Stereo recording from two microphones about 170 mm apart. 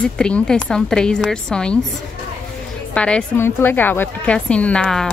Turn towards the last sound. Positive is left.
turn(degrees=5)  # may be behind; listen again after turning